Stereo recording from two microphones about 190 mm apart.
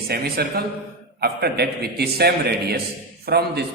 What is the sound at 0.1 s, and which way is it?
A man's voice, 55° right (ahead or behind).